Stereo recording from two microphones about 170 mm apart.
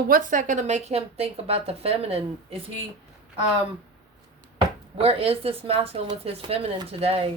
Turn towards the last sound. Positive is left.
turn(degrees=-35)  # may be behind; listen again after turning